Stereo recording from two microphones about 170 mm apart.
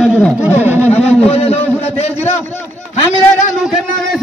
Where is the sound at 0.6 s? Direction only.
10° right (ahead or behind).